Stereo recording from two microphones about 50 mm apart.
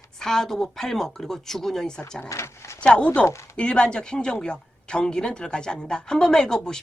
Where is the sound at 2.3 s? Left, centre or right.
Left.